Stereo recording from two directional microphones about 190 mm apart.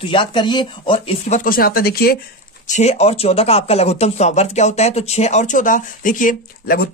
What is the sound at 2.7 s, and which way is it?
Speech, 35° left (ahead or behind).